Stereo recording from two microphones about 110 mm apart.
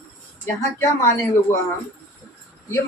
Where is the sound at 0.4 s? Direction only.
25° left (ahead or behind).